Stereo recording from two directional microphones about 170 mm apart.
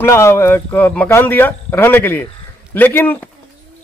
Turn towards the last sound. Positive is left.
turn(degrees=10)  # may be behind; listen again after turning